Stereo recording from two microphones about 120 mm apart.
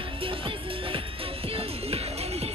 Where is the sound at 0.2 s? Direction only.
50° right (ahead or behind).